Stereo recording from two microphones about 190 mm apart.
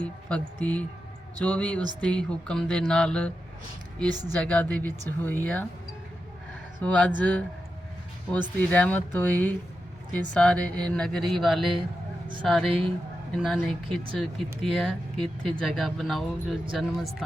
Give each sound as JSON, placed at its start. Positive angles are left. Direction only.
{"t": 0.0, "sound": "speech", "side_deg": 5}
{"t": 6.8, "sound": "speech", "side_deg": 5}